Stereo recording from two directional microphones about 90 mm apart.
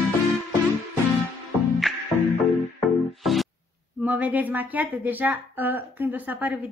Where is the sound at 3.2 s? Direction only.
Centre (ahead or behind).